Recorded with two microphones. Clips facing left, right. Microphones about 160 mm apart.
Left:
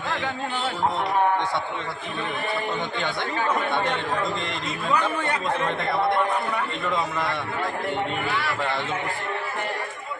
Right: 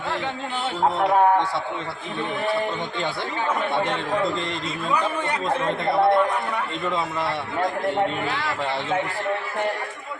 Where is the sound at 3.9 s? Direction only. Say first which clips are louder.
Right 3 dB; 35° right (ahead or behind).